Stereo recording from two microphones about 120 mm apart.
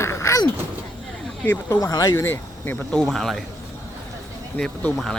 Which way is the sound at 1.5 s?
25° left (ahead or behind).